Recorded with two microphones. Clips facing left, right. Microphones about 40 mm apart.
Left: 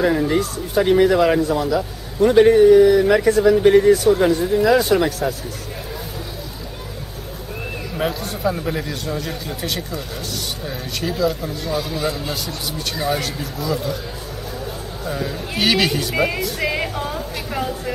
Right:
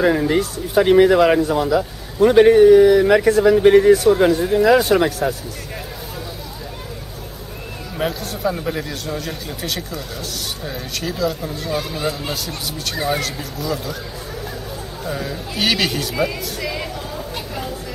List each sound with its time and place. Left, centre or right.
0.0 s a man's voice: centre
8.0 s a man's voice: centre
12.9 s a man's voice: centre
13.2 s a man's voice: centre
15.0 s a man's voice: centre
16.5 s a sound: left